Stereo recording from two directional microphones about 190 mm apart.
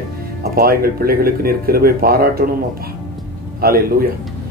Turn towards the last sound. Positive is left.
turn(degrees=-50)  # may be behind; listen again after turning